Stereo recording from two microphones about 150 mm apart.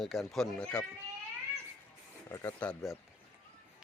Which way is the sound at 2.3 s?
15° left (ahead or behind).